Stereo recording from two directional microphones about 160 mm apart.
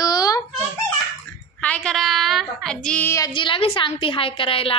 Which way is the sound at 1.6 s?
5° left (ahead or behind).